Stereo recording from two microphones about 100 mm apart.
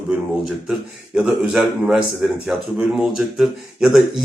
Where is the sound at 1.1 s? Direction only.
5° right (ahead or behind).